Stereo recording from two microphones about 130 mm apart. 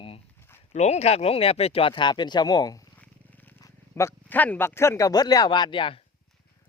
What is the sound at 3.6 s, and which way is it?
Speech, 20° left (ahead or behind).